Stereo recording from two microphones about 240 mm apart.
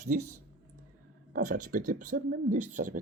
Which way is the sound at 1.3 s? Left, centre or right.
Right.